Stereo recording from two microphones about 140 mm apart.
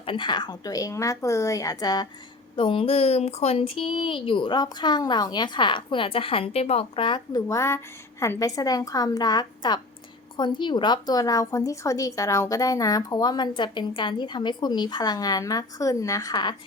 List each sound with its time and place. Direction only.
0.0 s a woman's voice: 35° left (ahead or behind)
2.6 s speech: 40° left (ahead or behind)
7.4 s a woman's voice: 20° left (ahead or behind)